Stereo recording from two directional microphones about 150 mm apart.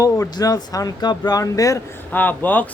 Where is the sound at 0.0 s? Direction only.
25° left (ahead or behind).